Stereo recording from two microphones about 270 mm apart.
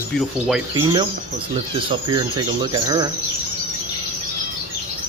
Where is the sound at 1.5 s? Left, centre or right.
Centre.